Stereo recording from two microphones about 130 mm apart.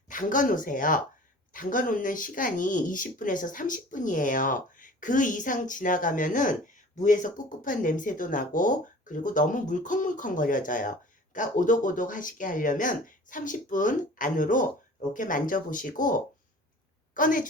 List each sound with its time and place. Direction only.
0.1 s speech: 90° left